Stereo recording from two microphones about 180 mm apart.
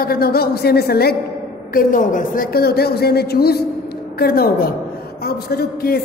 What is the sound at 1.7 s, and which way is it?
A woman's voice, 45° left (ahead or behind).